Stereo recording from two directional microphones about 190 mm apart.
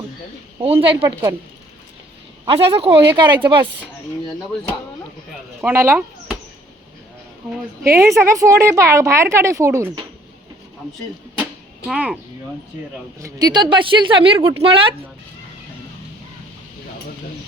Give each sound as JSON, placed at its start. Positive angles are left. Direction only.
{"t": 0.6, "sound": "a woman's voice", "side_deg": -30}
{"t": 2.4, "sound": "a woman's voice", "side_deg": -30}
{"t": 5.6, "sound": "speech", "side_deg": -15}
{"t": 7.9, "sound": "speech", "side_deg": -15}
{"t": 11.9, "sound": "speech", "side_deg": -5}
{"t": 13.1, "sound": "a woman's voice", "side_deg": -20}